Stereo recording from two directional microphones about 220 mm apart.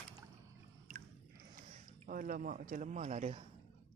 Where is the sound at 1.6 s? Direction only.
35° right (ahead or behind).